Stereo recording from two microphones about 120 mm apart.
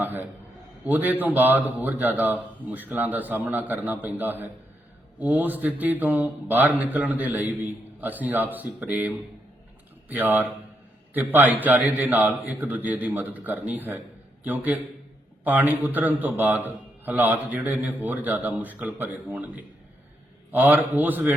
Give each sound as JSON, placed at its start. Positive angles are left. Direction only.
{"t": 0.0, "sound": "a sound", "side_deg": -15}
{"t": 0.9, "sound": "a man's voice", "side_deg": -15}
{"t": 20.5, "sound": "a man's voice", "side_deg": -15}